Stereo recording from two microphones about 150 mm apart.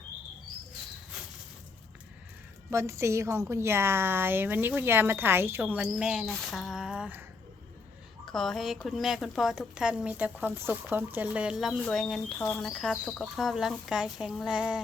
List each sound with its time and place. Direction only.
2.6 s a woman's voice: 20° right (ahead or behind)
8.2 s a woman's voice: 5° left (ahead or behind)